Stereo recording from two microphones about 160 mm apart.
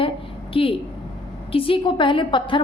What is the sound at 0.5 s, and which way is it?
A woman's voice, 35° left (ahead or behind).